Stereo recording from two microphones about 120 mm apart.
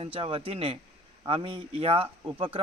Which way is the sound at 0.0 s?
50° right (ahead or behind).